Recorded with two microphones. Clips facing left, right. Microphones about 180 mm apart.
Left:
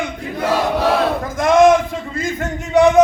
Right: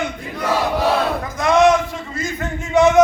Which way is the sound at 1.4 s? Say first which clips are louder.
Left 3 dB; 50° left (ahead or behind).